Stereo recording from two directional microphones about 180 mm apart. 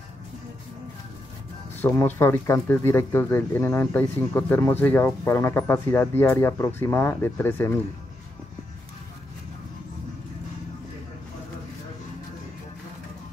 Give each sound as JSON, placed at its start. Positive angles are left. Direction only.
{"t": 1.8, "sound": "speech", "side_deg": 10}